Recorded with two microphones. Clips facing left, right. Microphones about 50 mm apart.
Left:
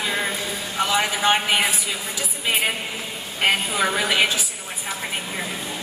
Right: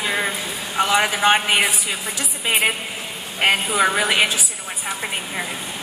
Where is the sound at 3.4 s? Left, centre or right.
Centre.